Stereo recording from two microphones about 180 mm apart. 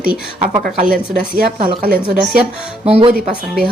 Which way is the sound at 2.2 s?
Centre (ahead or behind).